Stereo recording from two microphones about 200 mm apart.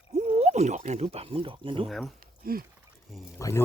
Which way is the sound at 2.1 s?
45° right (ahead or behind).